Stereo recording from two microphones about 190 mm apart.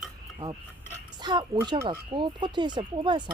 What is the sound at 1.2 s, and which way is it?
Speech, 20° right (ahead or behind).